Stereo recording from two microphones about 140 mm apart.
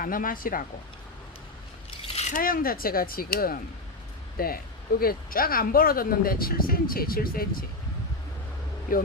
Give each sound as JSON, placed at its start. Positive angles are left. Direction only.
{"t": 0.0, "sound": "speech", "side_deg": 85}
{"t": 2.1, "sound": "speech", "side_deg": 80}
{"t": 8.9, "sound": "speech", "side_deg": 90}